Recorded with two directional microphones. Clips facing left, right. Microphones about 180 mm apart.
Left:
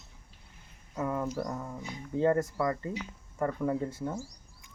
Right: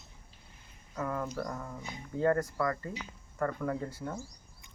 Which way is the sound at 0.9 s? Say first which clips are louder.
Left 3 dB; 20° left (ahead or behind).